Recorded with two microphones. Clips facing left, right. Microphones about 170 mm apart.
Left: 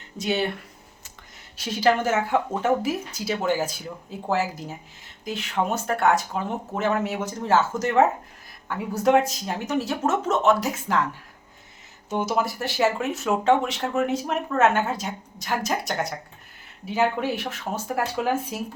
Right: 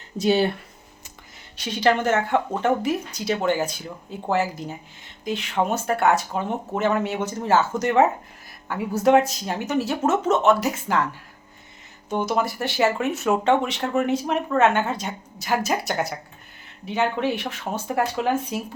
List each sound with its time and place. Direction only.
0.2 s speech: 35° right (ahead or behind)
1.5 s speech: 5° left (ahead or behind)
12.4 s speech: centre (ahead or behind)